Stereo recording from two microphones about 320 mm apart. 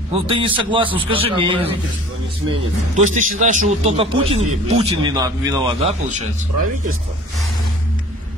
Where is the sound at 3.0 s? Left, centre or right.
Right.